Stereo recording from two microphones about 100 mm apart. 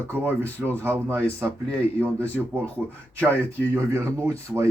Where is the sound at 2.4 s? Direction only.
5° right (ahead or behind).